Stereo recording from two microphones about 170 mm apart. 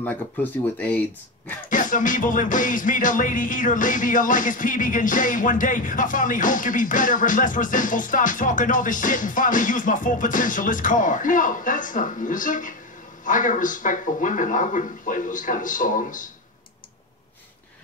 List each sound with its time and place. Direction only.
0.0 s speech: 10° left (ahead or behind)
1.7 s music: 50° left (ahead or behind)